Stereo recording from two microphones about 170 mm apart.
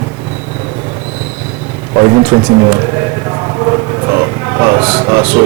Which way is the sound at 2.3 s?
20° right (ahead or behind).